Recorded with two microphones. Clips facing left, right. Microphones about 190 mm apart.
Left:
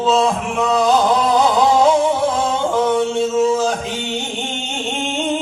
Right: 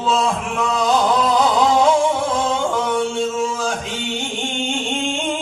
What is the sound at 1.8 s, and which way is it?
Music, 25° left (ahead or behind).